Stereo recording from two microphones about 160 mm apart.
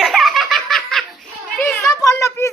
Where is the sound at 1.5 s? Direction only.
10° left (ahead or behind).